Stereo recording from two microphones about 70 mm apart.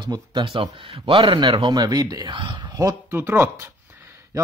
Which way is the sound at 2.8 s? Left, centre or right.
Right.